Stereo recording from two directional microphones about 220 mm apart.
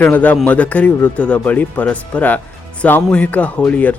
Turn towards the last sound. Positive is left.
turn(degrees=5)  # may be behind; listen again after turning